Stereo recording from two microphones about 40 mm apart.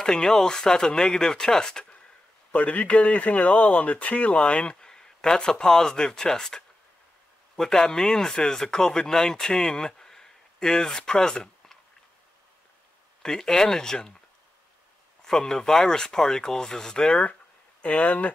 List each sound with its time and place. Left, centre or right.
0.0 s speech: centre
2.5 s a man's voice: left
4.7 s a sound: centre
5.7 s a man's voice: centre
13.2 s speech: centre
15.2 s speech: centre
17.8 s a man's voice: left